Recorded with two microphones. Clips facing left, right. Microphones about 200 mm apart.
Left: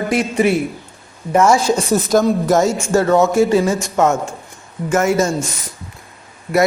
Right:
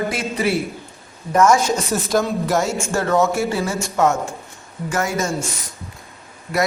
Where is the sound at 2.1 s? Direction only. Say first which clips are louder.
Left 5 dB; 45° left (ahead or behind).